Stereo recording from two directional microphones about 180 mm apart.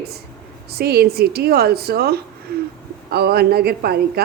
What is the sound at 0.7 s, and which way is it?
A woman's voice, 60° right (ahead or behind).